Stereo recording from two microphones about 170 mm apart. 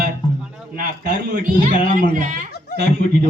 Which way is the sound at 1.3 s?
55° right (ahead or behind).